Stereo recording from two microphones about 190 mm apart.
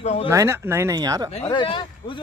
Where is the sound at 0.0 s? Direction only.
35° left (ahead or behind).